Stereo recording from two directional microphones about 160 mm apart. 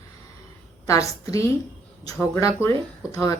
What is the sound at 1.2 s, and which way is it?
A woman's voice, 20° left (ahead or behind).